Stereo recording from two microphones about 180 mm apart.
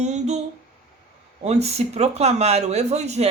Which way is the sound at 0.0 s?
40° right (ahead or behind).